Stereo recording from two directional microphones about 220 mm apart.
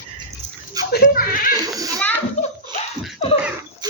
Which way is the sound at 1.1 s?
40° left (ahead or behind).